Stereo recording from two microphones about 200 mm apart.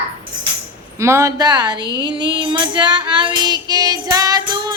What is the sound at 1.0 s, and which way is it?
Speech, 15° right (ahead or behind).